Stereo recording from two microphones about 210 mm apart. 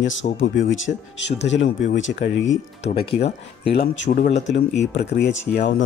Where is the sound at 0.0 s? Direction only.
65° left (ahead or behind).